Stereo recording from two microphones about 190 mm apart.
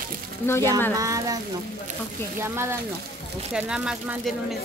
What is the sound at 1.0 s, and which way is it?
Speech, 15° right (ahead or behind).